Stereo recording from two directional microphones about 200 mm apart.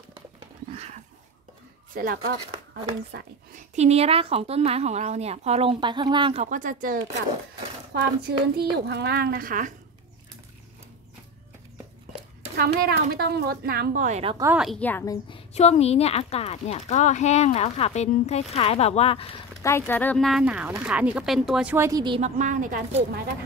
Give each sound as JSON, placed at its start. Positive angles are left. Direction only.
{"t": 2.0, "sound": "speech", "side_deg": -50}
{"t": 3.5, "sound": "a woman's voice", "side_deg": -35}
{"t": 6.4, "sound": "a woman's voice", "side_deg": -40}
{"t": 12.5, "sound": "speech", "side_deg": -50}
{"t": 14.5, "sound": "a woman's voice", "side_deg": -5}
{"t": 14.8, "sound": "a woman's voice", "side_deg": 10}
{"t": 15.2, "sound": "a woman's voice", "side_deg": 30}
{"t": 19.6, "sound": "a woman's voice", "side_deg": 10}
{"t": 22.2, "sound": "a woman's voice", "side_deg": -40}